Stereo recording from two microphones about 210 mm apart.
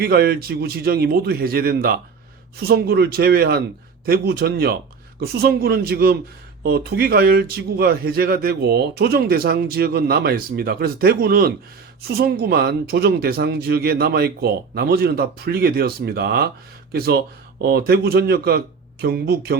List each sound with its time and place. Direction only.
0.0 s speech: 50° right (ahead or behind)